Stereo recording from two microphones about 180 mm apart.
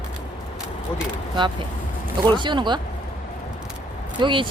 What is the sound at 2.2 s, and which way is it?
Speech, 25° right (ahead or behind).